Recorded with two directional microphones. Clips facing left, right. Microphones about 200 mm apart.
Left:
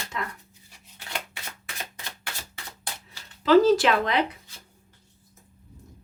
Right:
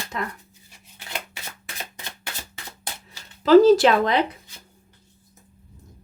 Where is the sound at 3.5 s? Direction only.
40° right (ahead or behind).